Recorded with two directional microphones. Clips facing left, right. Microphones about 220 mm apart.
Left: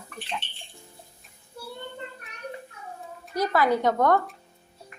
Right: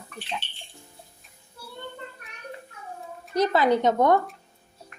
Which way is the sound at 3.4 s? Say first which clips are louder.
Right 2 dB; 20° right (ahead or behind).